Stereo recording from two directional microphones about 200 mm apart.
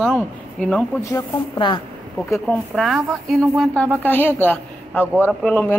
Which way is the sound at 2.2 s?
Centre (ahead or behind).